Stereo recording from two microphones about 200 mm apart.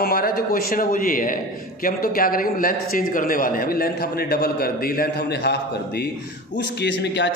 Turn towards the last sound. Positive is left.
turn(degrees=60)  # may be behind; listen again after turning